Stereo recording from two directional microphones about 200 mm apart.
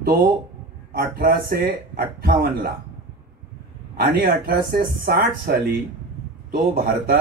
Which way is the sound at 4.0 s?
50° right (ahead or behind).